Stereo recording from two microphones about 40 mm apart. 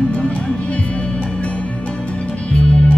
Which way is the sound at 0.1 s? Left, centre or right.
Left.